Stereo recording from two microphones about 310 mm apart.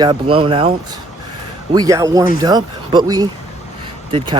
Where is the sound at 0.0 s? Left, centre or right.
Centre.